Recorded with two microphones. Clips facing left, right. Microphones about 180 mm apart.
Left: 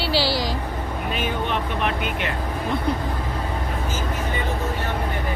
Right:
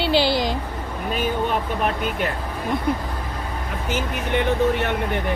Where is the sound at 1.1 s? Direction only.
40° right (ahead or behind).